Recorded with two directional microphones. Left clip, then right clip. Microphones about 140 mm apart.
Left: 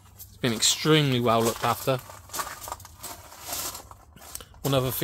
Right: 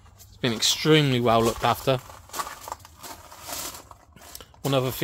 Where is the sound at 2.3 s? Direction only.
15° right (ahead or behind).